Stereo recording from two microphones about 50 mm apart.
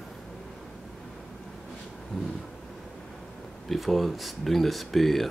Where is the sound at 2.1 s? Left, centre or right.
Centre.